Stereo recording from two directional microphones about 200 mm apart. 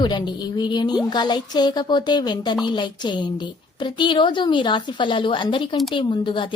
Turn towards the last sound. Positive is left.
turn(degrees=25)  # may be behind; listen again after turning